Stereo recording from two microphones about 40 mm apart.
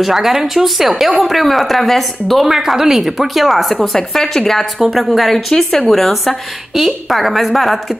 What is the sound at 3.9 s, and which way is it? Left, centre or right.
Speech, centre.